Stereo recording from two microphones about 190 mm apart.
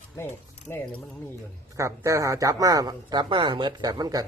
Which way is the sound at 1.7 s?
15° right (ahead or behind).